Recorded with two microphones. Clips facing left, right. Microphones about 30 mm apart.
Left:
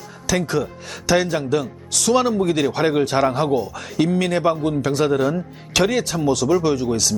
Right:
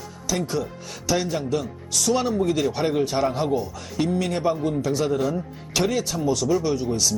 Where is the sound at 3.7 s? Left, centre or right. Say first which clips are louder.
Left 4 dB; left.